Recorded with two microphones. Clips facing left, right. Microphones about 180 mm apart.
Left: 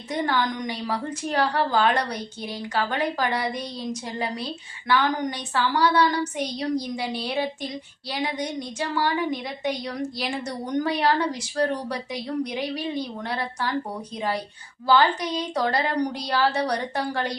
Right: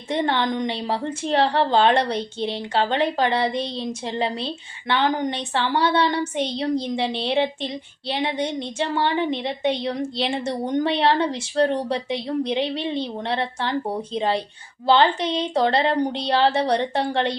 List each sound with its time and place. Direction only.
0.1 s a woman's voice: 25° right (ahead or behind)